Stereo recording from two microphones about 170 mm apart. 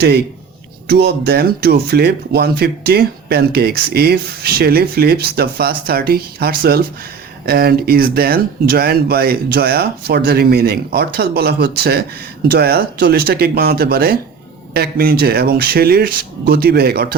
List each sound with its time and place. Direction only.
0.9 s speech: 70° right (ahead or behind)